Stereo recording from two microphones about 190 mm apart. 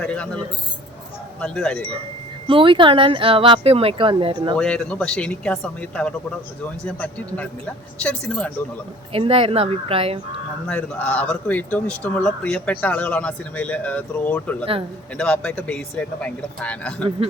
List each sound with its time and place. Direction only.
0.0 s speech: 5° left (ahead or behind)
1.4 s speech: 5° left (ahead or behind)
2.5 s speech: 25° right (ahead or behind)
4.5 s speech: 5° left (ahead or behind)
9.1 s speech: 30° right (ahead or behind)
10.7 s speech: 5° left (ahead or behind)
14.6 s speech: 30° right (ahead or behind)
15.2 s speech: 5° left (ahead or behind)